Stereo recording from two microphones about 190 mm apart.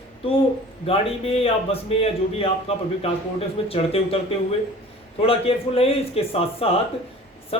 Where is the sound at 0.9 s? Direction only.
30° left (ahead or behind).